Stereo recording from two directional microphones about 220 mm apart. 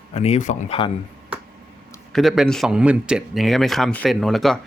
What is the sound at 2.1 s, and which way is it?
Speech, centre (ahead or behind).